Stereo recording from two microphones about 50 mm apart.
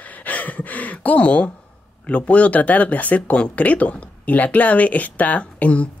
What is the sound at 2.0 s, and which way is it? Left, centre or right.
Speech, left.